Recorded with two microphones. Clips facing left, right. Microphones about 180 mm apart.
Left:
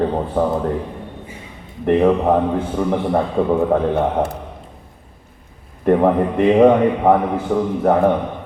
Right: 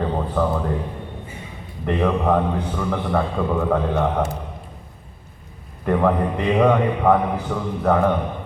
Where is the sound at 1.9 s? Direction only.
25° left (ahead or behind).